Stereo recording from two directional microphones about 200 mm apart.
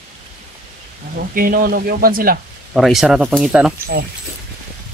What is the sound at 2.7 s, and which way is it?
A man's voice, centre (ahead or behind).